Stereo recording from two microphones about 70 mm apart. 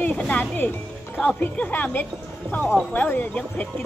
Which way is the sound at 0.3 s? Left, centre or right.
Left.